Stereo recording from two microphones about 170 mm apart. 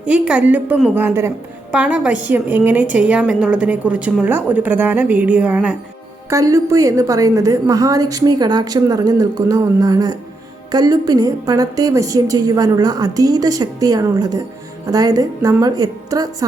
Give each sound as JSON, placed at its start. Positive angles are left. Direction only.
{"t": 0.0, "sound": "a woman's voice", "side_deg": -5}